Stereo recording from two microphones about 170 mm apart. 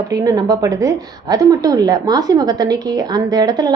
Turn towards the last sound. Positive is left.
turn(degrees=-25)  # may be behind; listen again after turning